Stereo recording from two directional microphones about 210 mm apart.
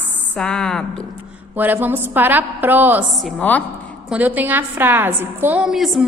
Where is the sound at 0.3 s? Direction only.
5° left (ahead or behind).